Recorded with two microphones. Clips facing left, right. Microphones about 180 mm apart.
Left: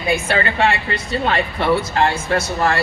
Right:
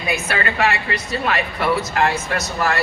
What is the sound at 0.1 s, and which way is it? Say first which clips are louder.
Speech: left 4 dB; 30° left (ahead or behind).